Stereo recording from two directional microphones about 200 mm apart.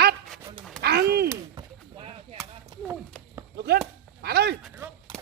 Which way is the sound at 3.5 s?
50° right (ahead or behind).